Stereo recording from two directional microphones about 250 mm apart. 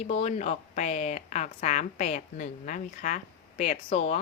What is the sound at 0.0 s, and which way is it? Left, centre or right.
Speech, left.